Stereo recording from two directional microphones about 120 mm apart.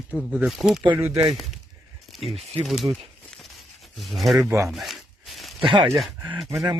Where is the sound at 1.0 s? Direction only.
55° right (ahead or behind).